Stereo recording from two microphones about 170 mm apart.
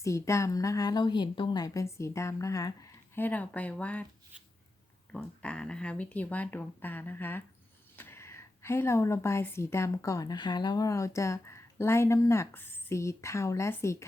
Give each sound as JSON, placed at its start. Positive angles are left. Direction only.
{"t": 0.0, "sound": "a woman's voice", "side_deg": 15}
{"t": 3.2, "sound": "a woman's voice", "side_deg": 10}
{"t": 5.1, "sound": "a woman's voice", "side_deg": 5}